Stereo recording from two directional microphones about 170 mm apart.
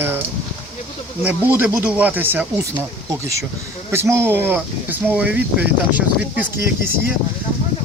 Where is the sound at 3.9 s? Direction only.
15° right (ahead or behind).